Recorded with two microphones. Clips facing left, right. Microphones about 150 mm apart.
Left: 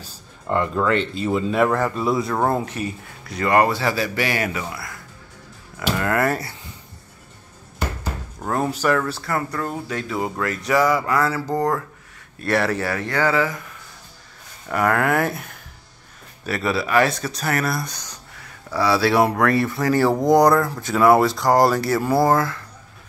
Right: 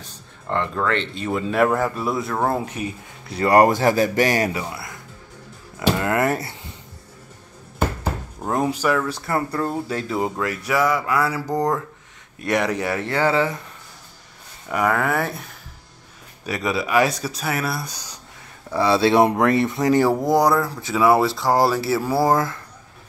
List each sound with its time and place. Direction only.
0.5 s speech: 10° left (ahead or behind); by 2.9 s 10° right (ahead or behind)
3.3 s speech: 30° right (ahead or behind)
4.5 s speech: 25° right (ahead or behind)
8.4 s speech: 15° right (ahead or behind)
10.3 s a sound: 10° right (ahead or behind)
10.7 s a sound: centre (ahead or behind); by 11.8 s 15° right (ahead or behind)
12.4 s speech: 15° right (ahead or behind)
14.7 s speech: 5° right (ahead or behind)
16.4 s a sound: 15° right (ahead or behind)
18.7 s speech: 20° right (ahead or behind)
20.2 s speech: 5° right (ahead or behind)